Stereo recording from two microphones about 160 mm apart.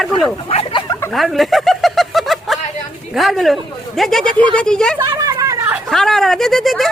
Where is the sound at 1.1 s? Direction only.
Centre (ahead or behind).